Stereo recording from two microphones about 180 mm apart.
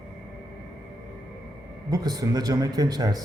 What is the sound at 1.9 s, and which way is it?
Speech, 20° right (ahead or behind).